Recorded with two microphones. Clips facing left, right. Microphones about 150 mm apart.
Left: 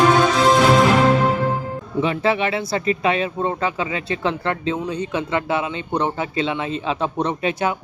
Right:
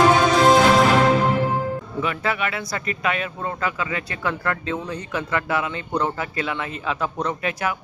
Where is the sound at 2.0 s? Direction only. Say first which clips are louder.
Left 7 dB; 30° left (ahead or behind).